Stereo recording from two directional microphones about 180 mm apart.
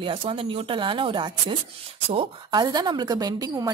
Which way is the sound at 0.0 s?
30° right (ahead or behind).